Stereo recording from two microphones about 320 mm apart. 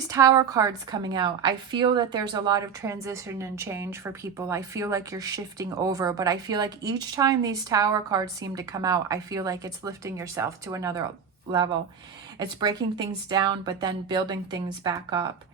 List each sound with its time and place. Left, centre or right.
0.1 s a woman's voice: centre
12.4 s a woman's voice: centre